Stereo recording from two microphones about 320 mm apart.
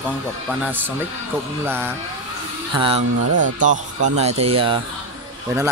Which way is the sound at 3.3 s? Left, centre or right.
Right.